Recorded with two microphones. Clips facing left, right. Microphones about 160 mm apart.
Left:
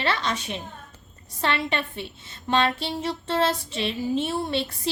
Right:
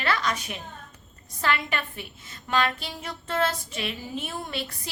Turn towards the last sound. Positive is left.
turn(degrees=30)  # may be behind; listen again after turning